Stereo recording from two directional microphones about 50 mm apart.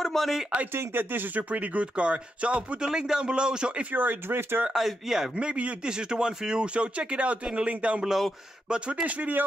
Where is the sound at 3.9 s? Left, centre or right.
Right.